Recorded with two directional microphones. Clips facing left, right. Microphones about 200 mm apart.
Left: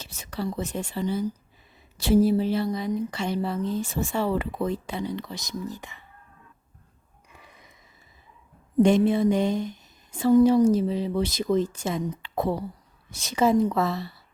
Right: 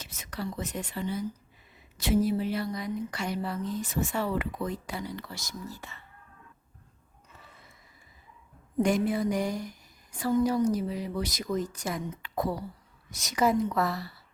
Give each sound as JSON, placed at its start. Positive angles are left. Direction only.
{"t": 0.0, "sound": "speech", "side_deg": 30}
{"t": 7.3, "sound": "a sound", "side_deg": 15}
{"t": 8.8, "sound": "a woman's voice", "side_deg": 25}